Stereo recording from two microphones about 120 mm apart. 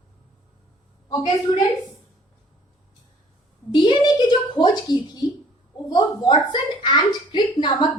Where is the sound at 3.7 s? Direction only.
40° left (ahead or behind).